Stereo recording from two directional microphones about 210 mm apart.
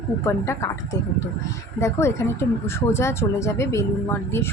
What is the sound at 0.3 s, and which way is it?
Speech, 15° left (ahead or behind).